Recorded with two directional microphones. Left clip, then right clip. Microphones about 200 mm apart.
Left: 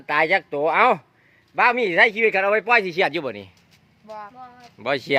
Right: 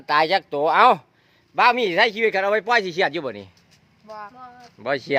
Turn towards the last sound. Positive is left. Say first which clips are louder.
# left 1 dB
turn(degrees=5)  # may be behind; listen again after turning